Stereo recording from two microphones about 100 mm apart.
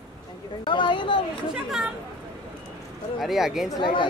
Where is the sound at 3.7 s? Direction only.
50° left (ahead or behind).